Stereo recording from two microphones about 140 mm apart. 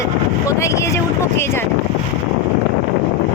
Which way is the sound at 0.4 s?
20° left (ahead or behind).